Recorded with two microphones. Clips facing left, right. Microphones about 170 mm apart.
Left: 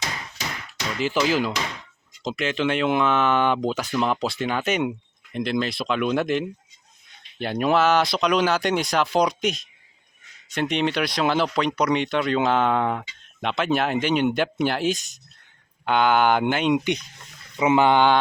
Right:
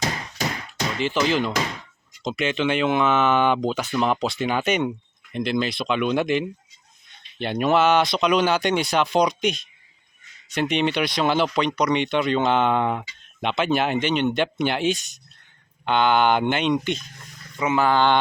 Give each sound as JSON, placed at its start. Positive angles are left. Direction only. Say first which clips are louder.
{"t": 0.9, "sound": "speech", "louder": "even", "side_deg": 5}